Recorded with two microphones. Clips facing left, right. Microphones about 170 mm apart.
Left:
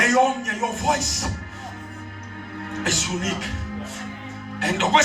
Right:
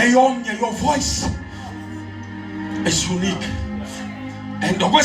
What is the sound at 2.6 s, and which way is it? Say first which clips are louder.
Speech: right 6 dB; 35° right (ahead or behind).